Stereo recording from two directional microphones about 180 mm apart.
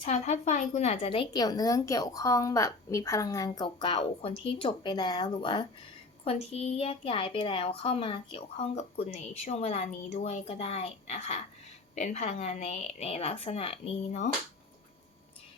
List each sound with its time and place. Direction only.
0.0 s a woman's voice: 40° left (ahead or behind)